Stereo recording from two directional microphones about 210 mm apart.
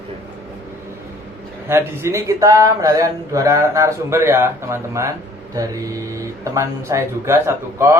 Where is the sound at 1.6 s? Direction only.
15° right (ahead or behind).